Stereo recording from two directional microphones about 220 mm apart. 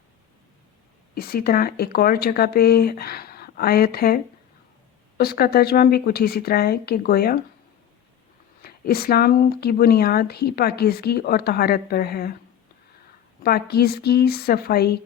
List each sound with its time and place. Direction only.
1.1 s speech: 45° left (ahead or behind)
8.6 s speech: 45° left (ahead or behind)
13.4 s speech: 45° left (ahead or behind)